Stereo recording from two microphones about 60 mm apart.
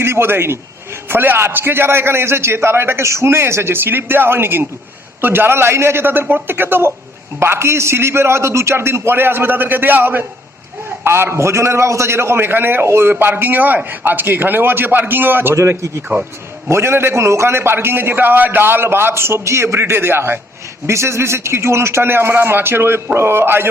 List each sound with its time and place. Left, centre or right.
0.0 s a man's voice: right
20.8 s a man's voice: right